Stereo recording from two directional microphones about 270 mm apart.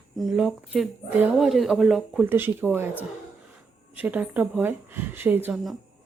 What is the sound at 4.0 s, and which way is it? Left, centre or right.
Speech, centre.